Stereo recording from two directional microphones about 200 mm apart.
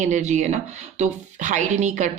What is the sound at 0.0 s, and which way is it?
Speech, 35° right (ahead or behind).